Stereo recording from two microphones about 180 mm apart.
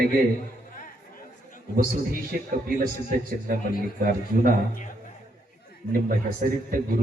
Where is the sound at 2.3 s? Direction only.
55° right (ahead or behind).